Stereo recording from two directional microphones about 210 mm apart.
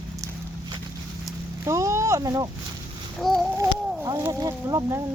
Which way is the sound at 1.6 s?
15° right (ahead or behind).